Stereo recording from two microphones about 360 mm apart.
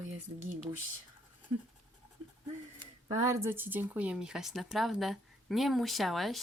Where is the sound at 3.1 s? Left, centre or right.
Centre.